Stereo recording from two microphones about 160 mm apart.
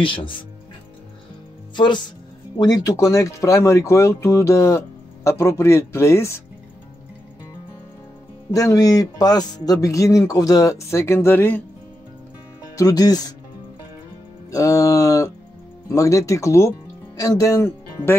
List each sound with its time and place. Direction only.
0.0 s speech: 30° left (ahead or behind)
2.5 s speech: 25° left (ahead or behind)
8.5 s speech: 20° left (ahead or behind)
12.7 s speech: 25° left (ahead or behind)
14.5 s speech: 20° left (ahead or behind)